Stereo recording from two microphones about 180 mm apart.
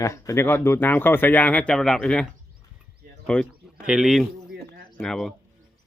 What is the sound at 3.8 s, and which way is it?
Speech, 5° right (ahead or behind).